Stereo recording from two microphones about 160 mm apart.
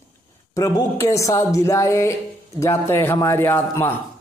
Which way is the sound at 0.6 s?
20° left (ahead or behind).